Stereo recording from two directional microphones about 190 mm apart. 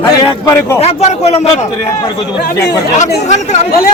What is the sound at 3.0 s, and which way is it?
Speech, 40° left (ahead or behind).